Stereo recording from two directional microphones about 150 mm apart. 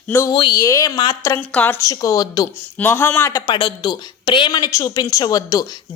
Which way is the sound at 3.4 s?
35° left (ahead or behind).